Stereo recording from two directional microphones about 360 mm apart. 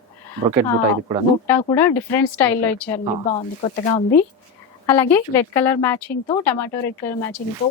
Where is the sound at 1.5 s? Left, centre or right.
Centre.